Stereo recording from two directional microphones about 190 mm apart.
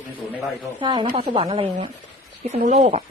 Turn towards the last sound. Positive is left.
turn(degrees=-35)  # may be behind; listen again after turning